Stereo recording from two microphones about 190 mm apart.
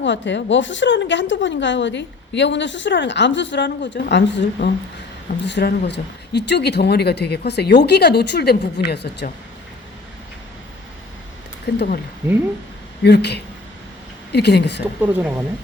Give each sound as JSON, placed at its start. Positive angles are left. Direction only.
{"t": 0.0, "sound": "a woman's voice", "side_deg": 70}
{"t": 11.7, "sound": "speech", "side_deg": 60}
{"t": 13.0, "sound": "speech", "side_deg": 60}
{"t": 15.0, "sound": "speech", "side_deg": -5}